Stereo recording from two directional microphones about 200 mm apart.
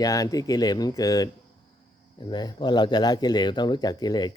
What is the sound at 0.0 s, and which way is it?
Speech, 15° left (ahead or behind).